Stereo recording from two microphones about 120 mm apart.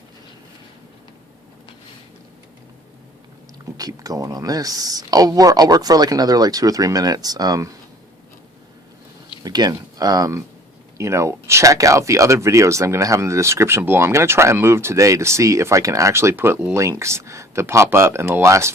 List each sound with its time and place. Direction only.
3.8 s speech: 30° right (ahead or behind)
9.4 s speech: 35° right (ahead or behind)